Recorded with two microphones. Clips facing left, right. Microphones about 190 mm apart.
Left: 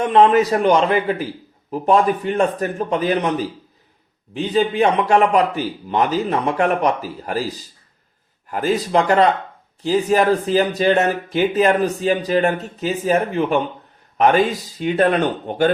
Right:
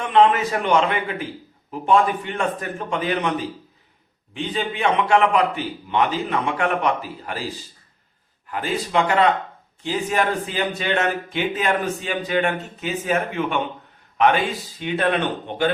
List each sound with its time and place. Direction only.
0.0 s speech: 40° left (ahead or behind)